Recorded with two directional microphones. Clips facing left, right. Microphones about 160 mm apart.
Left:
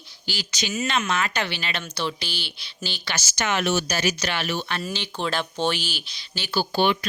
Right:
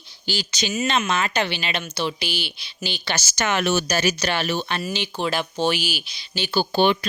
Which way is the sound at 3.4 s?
55° right (ahead or behind).